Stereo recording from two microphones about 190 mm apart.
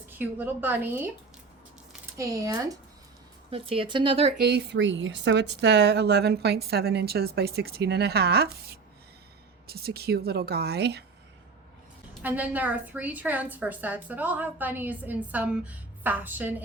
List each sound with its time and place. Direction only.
0.1 s a woman's voice: 10° right (ahead or behind)
2.1 s a woman's voice: 15° right (ahead or behind)
3.5 s speech: 30° right (ahead or behind)
4.4 s speech: 60° right (ahead or behind)
12.2 s a woman's voice: 10° right (ahead or behind)